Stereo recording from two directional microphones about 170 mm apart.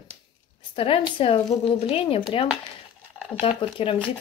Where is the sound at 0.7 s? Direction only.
35° left (ahead or behind).